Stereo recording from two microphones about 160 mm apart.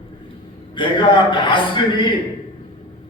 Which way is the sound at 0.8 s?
30° left (ahead or behind).